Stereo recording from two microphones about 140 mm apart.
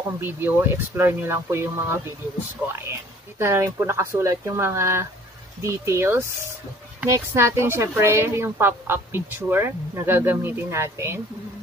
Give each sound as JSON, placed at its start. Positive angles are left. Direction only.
{"t": 0.2, "sound": "a woman's voice", "side_deg": -15}